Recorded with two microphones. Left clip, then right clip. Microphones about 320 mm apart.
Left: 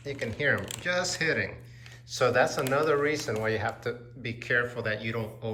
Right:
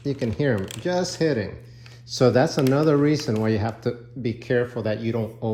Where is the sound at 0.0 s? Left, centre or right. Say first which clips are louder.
Right 4 dB; centre.